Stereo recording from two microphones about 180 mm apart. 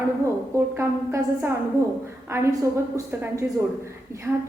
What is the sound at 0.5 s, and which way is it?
Speech, 15° right (ahead or behind).